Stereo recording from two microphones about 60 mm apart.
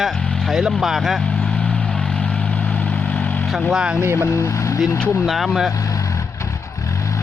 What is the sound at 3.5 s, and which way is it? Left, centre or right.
Speech, centre.